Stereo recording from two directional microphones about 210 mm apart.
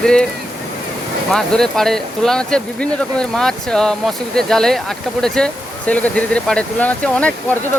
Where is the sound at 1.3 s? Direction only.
Centre (ahead or behind).